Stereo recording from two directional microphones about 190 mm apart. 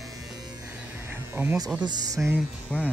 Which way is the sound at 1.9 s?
20° right (ahead or behind).